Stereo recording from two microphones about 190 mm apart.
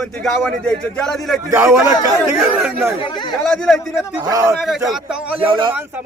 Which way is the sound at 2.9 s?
25° left (ahead or behind).